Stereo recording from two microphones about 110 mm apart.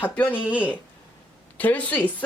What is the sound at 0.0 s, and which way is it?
Speech, 15° left (ahead or behind).